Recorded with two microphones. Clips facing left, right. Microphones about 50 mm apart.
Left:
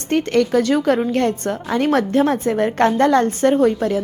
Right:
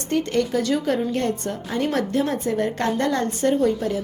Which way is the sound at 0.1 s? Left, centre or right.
Left.